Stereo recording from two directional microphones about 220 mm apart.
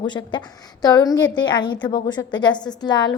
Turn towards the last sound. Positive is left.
turn(degrees=20)  # may be behind; listen again after turning